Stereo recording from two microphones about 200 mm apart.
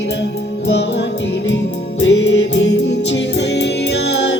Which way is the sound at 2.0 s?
60° left (ahead or behind).